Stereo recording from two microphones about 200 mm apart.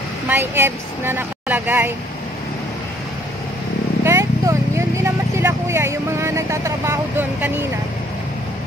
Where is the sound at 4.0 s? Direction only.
15° right (ahead or behind).